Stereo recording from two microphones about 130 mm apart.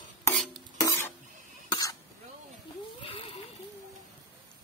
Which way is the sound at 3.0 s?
45° left (ahead or behind).